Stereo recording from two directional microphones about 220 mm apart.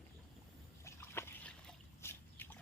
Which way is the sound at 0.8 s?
10° left (ahead or behind).